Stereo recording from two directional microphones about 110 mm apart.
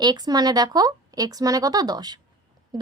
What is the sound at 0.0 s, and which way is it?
A woman's voice, 40° right (ahead or behind).